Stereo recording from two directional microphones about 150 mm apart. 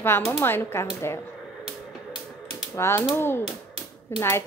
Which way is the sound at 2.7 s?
15° left (ahead or behind).